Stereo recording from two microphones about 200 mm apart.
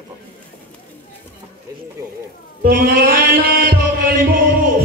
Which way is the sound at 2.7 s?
45° right (ahead or behind).